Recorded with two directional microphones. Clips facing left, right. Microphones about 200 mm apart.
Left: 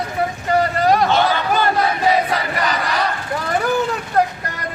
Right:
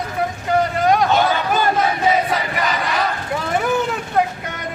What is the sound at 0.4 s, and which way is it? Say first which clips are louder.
Vehicle: even; centre (ahead or behind).